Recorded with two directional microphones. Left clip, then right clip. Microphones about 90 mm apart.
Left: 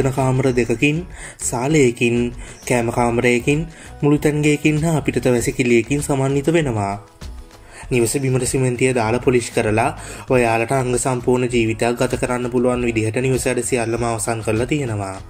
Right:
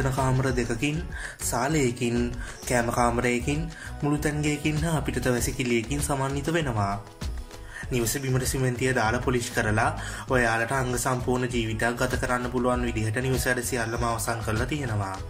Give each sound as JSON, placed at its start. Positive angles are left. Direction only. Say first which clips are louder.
{"t": 0.0, "sound": "speech", "louder": "left 8 dB", "side_deg": 45}
{"t": 7.9, "sound": "speech", "louder": "left 10 dB", "side_deg": 35}